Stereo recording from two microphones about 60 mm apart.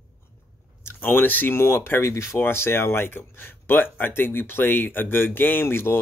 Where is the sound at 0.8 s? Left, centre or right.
Left.